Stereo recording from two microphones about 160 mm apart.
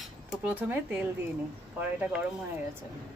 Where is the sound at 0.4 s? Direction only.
10° right (ahead or behind).